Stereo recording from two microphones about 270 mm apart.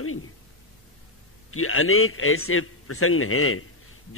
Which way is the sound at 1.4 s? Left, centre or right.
Left.